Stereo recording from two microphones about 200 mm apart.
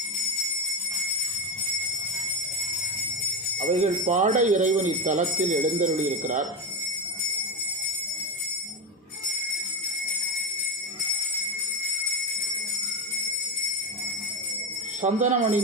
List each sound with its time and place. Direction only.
3.7 s speech: 35° right (ahead or behind)
15.0 s speech: 40° right (ahead or behind)